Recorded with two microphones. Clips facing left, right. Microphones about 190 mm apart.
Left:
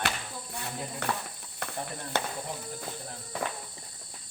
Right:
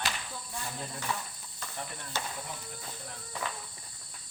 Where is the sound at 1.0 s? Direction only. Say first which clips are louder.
Left 4 dB; 65° left (ahead or behind).